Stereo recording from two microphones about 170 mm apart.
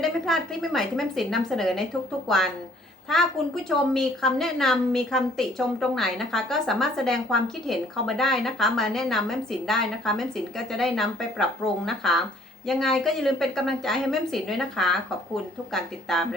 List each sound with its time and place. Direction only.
0.0 s a woman's voice: centre (ahead or behind)